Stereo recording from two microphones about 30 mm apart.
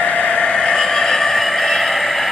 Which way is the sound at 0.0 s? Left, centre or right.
Left.